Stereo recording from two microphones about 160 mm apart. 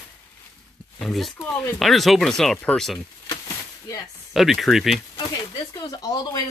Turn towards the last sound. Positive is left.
turn(degrees=25)  # may be behind; listen again after turning